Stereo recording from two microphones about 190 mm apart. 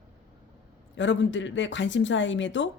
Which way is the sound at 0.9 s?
75° left (ahead or behind).